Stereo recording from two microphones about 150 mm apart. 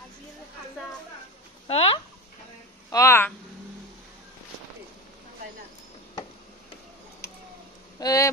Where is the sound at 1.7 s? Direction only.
40° left (ahead or behind).